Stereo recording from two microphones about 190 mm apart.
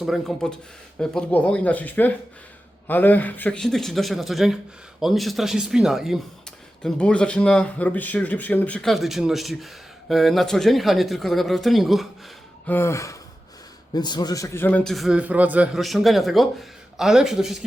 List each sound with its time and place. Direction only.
0.0 s a man's voice: centre (ahead or behind)
12.6 s gasp: 10° left (ahead or behind)
13.9 s a man's voice: 20° left (ahead or behind); by 17.6 s centre (ahead or behind)